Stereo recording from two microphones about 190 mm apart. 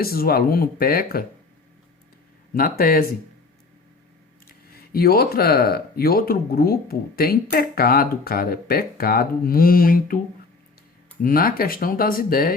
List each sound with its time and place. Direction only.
0.0 s speech: 55° left (ahead or behind)
2.6 s speech: 50° left (ahead or behind)
4.7 s speech: 55° left (ahead or behind)
11.2 s speech: 50° left (ahead or behind)